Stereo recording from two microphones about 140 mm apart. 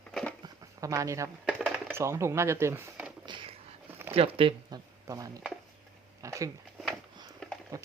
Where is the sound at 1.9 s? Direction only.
20° right (ahead or behind).